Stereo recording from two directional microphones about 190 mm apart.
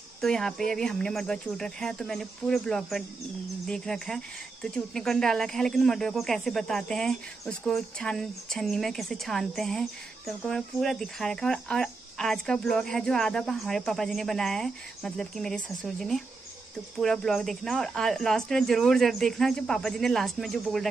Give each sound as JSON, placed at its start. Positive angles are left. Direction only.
{"t": 0.2, "sound": "speech", "side_deg": 5}